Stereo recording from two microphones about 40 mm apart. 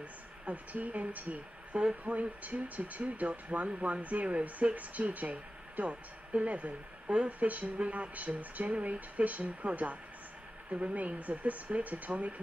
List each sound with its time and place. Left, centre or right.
0.0 s speech: right